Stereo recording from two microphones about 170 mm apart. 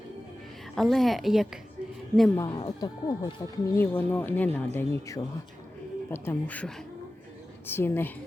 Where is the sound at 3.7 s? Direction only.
10° left (ahead or behind).